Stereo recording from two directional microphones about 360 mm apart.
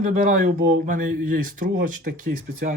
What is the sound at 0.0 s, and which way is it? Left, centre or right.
Speech, right.